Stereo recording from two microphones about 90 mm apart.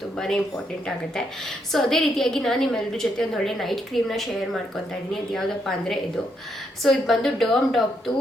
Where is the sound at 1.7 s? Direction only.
Centre (ahead or behind).